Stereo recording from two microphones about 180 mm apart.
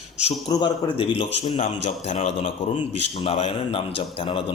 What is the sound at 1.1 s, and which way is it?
A man's voice, 35° left (ahead or behind).